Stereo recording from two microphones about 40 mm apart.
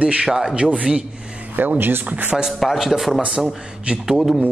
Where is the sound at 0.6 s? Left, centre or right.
Right.